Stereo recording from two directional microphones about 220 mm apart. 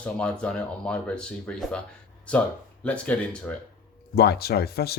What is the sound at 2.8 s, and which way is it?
Speech, 5° left (ahead or behind).